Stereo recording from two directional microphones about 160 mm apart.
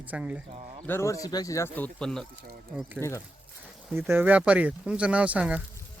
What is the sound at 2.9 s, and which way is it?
Speech, 15° left (ahead or behind).